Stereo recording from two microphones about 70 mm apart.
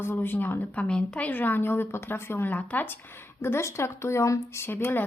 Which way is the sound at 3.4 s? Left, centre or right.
Left.